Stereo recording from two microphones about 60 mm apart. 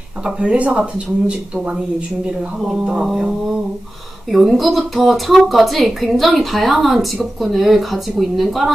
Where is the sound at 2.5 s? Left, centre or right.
Centre.